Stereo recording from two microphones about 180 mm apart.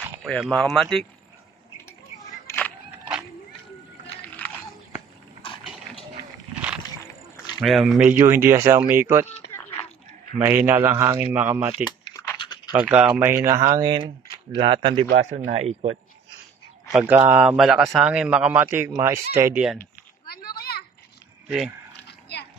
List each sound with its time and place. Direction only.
0.2 s speech: centre (ahead or behind)
2.4 s a sound: 10° left (ahead or behind)
7.6 s speech: centre (ahead or behind)
8.2 s speech: 15° right (ahead or behind)
10.4 s speech: 10° right (ahead or behind)
12.4 s typing: 25° left (ahead or behind)
12.8 s speech: 5° right (ahead or behind); by 16.3 s 35° right (ahead or behind)
16.9 s speech: 10° right (ahead or behind)
20.2 s children playing: 55° left (ahead or behind)
21.5 s speech: 5° right (ahead or behind)
22.0 s a sound: 70° left (ahead or behind)